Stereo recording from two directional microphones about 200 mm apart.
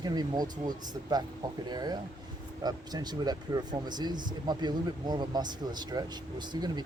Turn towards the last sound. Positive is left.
turn(degrees=-20)  # may be behind; listen again after turning